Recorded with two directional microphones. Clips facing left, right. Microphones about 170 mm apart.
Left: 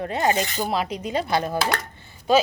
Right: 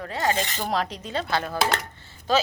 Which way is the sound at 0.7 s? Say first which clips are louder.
Left 2 dB; 10° left (ahead or behind).